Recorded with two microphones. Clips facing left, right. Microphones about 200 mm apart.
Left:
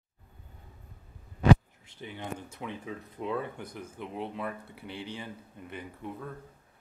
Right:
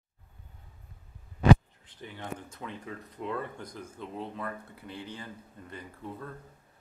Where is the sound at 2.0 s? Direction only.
15° left (ahead or behind).